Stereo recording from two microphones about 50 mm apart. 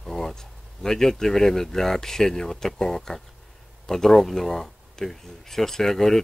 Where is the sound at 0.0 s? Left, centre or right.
Centre.